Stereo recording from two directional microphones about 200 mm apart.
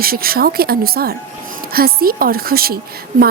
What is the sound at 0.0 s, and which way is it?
A woman's voice, 50° right (ahead or behind).